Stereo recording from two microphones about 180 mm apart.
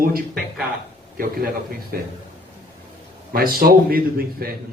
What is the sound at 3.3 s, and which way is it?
A man's voice, 55° right (ahead or behind).